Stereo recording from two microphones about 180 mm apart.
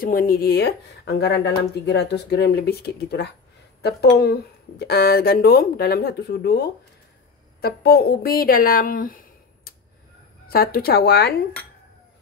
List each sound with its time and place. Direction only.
0.0 s speech: 55° left (ahead or behind)
10.5 s speech: 55° left (ahead or behind)